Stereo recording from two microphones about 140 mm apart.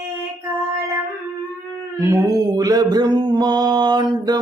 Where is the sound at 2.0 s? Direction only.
20° right (ahead or behind).